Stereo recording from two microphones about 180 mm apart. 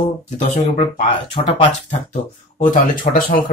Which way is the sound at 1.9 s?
45° left (ahead or behind).